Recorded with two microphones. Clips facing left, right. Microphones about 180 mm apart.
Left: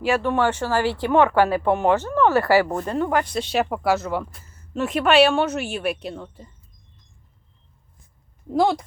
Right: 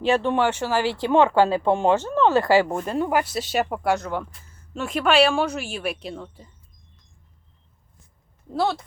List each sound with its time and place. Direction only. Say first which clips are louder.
0.0 s speech: even; 25° right (ahead or behind)
0.4 s a woman's voice: left 1 dB; 10° right (ahead or behind)
8.5 s speech: left 4 dB; 15° left (ahead or behind)